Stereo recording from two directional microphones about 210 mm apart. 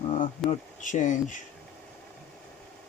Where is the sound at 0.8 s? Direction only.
35° left (ahead or behind).